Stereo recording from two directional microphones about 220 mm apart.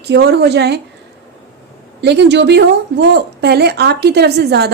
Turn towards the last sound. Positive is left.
turn(degrees=-50)  # may be behind; listen again after turning